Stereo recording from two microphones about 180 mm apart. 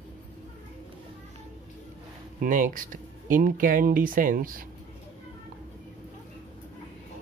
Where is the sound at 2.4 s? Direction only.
45° right (ahead or behind).